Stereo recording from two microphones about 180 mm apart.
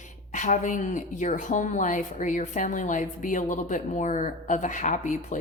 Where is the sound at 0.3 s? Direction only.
45° left (ahead or behind).